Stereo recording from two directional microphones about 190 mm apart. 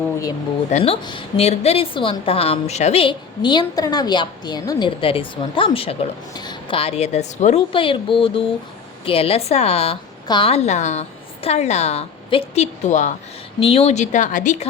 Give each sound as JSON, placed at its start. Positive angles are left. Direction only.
{"t": 0.7, "sound": "a woman's voice", "side_deg": 30}